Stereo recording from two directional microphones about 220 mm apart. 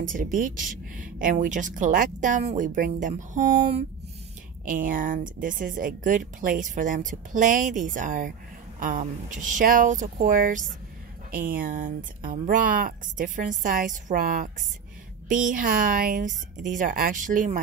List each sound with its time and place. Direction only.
0.0 s speech: 35° right (ahead or behind)